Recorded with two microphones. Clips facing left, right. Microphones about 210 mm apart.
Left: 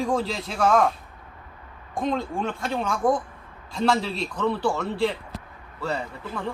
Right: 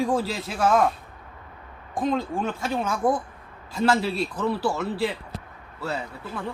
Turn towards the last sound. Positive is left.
turn(degrees=-5)  # may be behind; listen again after turning